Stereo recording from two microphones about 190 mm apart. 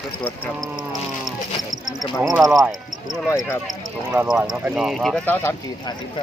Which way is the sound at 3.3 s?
15° left (ahead or behind).